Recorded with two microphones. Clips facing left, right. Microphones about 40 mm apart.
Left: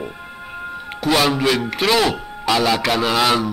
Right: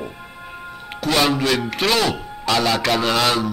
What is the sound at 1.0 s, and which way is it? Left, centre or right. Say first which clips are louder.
A man's voice: left 1 dB; centre.